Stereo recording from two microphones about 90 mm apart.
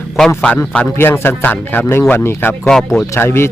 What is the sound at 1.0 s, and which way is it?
Speech, 25° left (ahead or behind).